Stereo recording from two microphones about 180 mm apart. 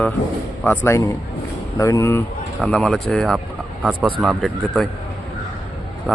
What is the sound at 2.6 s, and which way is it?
Speech, 5° left (ahead or behind).